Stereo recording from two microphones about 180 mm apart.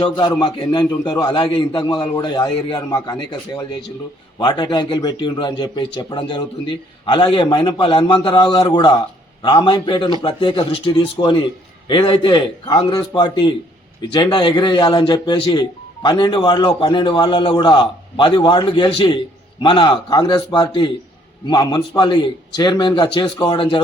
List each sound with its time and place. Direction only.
0.3 s a man's voice: 25° left (ahead or behind)